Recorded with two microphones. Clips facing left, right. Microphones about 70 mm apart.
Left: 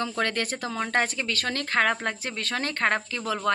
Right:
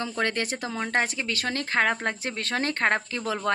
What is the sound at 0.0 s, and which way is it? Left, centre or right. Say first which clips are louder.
Speech: even; right.